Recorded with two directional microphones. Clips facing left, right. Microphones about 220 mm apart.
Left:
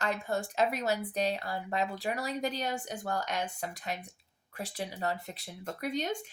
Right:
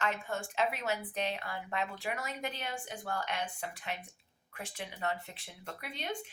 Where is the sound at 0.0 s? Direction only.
40° left (ahead or behind).